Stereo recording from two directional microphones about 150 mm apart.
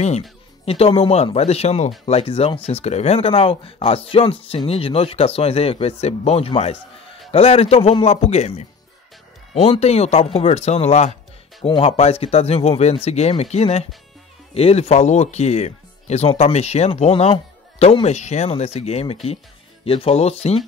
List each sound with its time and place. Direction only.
0.7 s speech: 40° left (ahead or behind)